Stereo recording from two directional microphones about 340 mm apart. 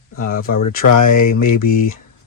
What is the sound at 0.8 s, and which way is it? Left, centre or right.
Speech, left.